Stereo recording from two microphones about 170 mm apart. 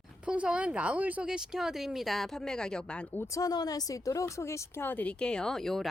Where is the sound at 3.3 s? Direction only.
20° left (ahead or behind).